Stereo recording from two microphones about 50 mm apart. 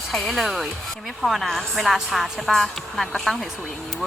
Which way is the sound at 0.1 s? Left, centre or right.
Centre.